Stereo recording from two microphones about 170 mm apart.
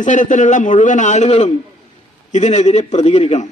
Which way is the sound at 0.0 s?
50° left (ahead or behind).